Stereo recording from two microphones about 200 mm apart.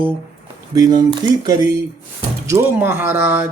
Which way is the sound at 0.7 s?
20° right (ahead or behind).